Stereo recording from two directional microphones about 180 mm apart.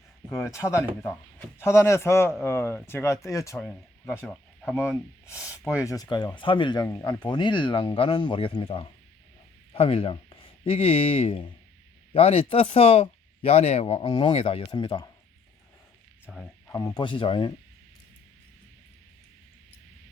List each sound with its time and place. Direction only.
0.4 s speech: 15° left (ahead or behind)
5.4 s speech: 5° right (ahead or behind)
5.8 s speech: 20° left (ahead or behind)
16.2 s speech: centre (ahead or behind)
16.6 s speech: 15° left (ahead or behind)